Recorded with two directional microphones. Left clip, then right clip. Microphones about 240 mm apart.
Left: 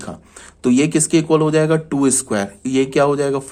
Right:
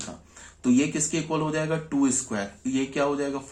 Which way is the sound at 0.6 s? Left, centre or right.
Left.